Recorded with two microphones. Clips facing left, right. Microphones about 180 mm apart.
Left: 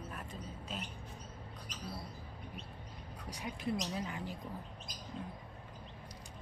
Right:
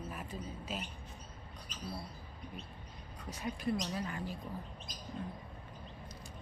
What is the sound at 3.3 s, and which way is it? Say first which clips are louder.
Speech: right 2 dB; 20° left (ahead or behind).